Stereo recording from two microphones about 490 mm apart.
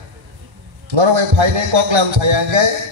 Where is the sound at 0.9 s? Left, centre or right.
Right.